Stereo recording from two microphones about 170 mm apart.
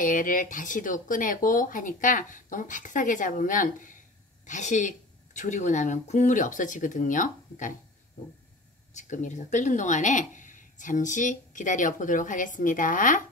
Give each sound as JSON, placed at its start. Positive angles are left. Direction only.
{"t": 0.0, "sound": "speech", "side_deg": 50}
{"t": 8.9, "sound": "speech", "side_deg": 45}